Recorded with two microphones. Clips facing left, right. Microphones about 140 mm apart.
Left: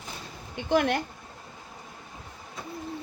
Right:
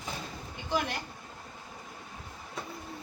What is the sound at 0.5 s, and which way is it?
Speech, 60° left (ahead or behind).